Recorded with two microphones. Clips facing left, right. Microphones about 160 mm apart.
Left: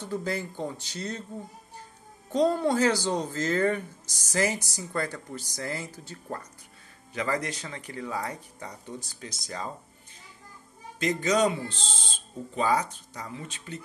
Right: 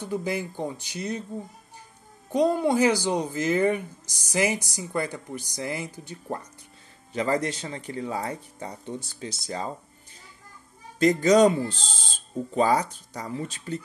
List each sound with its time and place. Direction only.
0.0 s speech: 15° right (ahead or behind)
2.3 s speech: 10° right (ahead or behind)
7.2 s speech: 25° right (ahead or behind)
11.0 s speech: 40° right (ahead or behind)